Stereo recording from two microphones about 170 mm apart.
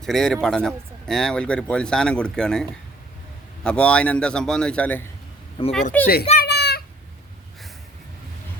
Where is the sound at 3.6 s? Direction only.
5° left (ahead or behind).